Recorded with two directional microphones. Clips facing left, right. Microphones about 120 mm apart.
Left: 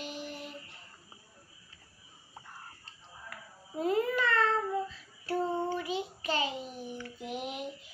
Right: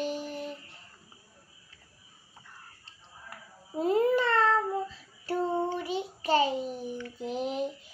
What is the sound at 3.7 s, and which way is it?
Babbling, 35° right (ahead or behind).